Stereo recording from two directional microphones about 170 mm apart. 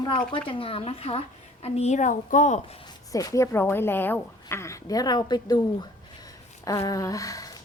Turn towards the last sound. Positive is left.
turn(degrees=20)  # may be behind; listen again after turning